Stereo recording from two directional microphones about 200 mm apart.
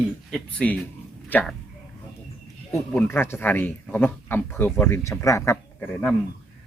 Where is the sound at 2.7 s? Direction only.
10° left (ahead or behind).